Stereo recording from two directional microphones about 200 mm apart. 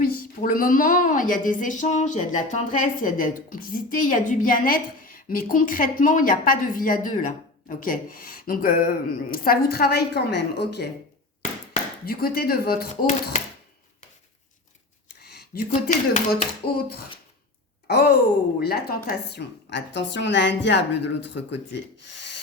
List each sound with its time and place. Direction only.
0.4 s a woman's voice: 45° left (ahead or behind)
15.2 s a sound: 55° left (ahead or behind)
15.7 s speech: 35° left (ahead or behind)
17.8 s a woman's voice: 50° left (ahead or behind)